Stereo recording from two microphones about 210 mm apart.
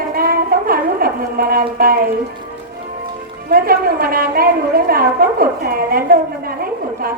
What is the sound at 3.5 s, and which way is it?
A woman's voice, 45° right (ahead or behind).